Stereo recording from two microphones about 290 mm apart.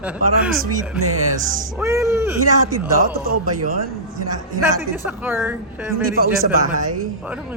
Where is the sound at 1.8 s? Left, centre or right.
Centre.